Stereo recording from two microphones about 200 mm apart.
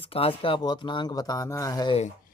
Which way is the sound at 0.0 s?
30° left (ahead or behind).